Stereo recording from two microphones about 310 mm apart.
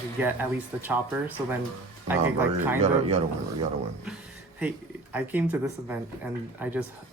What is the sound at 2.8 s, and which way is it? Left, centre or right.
Speech, centre.